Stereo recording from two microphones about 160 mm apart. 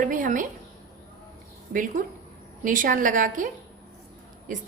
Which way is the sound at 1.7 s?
60° right (ahead or behind).